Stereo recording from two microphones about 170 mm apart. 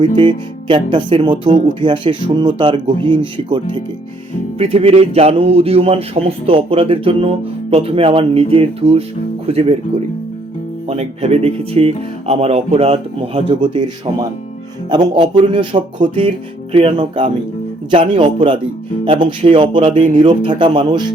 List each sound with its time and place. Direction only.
0.0 s speech: 30° right (ahead or behind)
10.8 s speech: 40° right (ahead or behind)